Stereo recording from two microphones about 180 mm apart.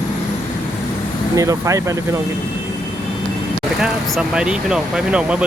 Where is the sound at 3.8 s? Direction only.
5° right (ahead or behind).